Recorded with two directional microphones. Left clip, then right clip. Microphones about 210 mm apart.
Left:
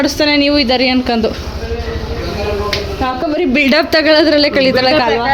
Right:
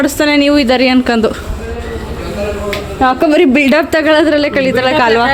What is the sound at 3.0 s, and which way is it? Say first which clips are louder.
Speech: right 8 dB; 35° right (ahead or behind).